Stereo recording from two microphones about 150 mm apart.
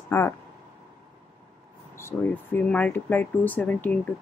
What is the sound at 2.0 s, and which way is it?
Speech, 15° left (ahead or behind).